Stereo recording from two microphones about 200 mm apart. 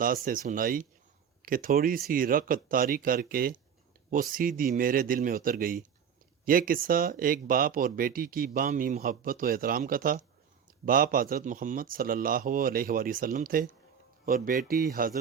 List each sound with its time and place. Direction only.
0.0 s speech: 45° right (ahead or behind)